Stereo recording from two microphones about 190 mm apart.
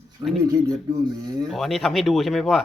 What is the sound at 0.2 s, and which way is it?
Speech, 20° right (ahead or behind).